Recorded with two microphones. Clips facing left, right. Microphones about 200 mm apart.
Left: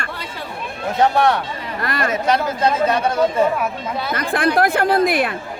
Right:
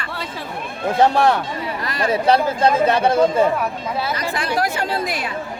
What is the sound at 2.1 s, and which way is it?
Speech, 30° right (ahead or behind).